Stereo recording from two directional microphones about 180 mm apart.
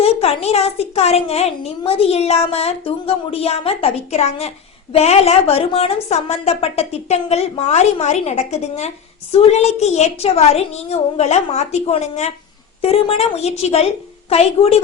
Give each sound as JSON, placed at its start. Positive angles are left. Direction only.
{"t": 0.0, "sound": "a woman's voice", "side_deg": 35}